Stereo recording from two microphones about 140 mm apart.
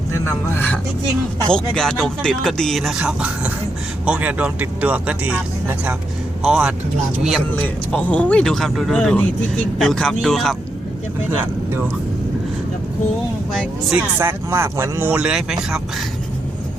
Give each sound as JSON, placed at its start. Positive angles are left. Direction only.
{"t": 0.1, "sound": "speech", "side_deg": 15}
{"t": 7.5, "sound": "speech", "side_deg": 10}
{"t": 11.3, "sound": "speech", "side_deg": -20}
{"t": 13.5, "sound": "speech", "side_deg": 0}
{"t": 14.2, "sound": "speech", "side_deg": -20}